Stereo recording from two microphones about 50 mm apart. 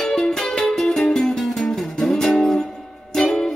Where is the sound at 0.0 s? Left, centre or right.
Centre.